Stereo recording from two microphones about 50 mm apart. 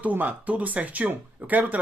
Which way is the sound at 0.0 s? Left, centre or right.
Right.